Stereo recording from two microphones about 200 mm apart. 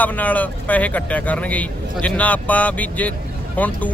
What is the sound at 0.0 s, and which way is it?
Speech, 10° left (ahead or behind).